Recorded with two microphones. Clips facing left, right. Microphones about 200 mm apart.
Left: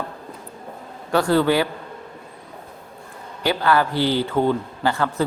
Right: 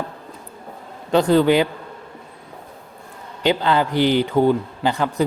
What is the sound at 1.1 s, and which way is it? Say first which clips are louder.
Speech: right 3 dB; 20° right (ahead or behind).